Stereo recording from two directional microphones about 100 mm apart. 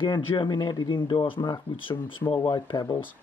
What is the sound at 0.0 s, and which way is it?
Speech, 55° left (ahead or behind).